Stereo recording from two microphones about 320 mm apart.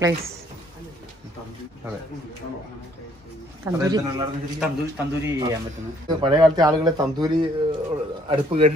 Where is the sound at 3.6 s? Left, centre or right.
Centre.